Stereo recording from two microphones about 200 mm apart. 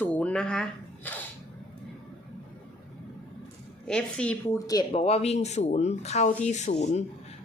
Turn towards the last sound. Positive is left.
turn(degrees=35)  # may be behind; listen again after turning